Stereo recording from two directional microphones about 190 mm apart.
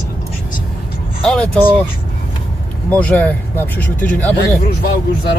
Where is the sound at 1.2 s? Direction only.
5° left (ahead or behind).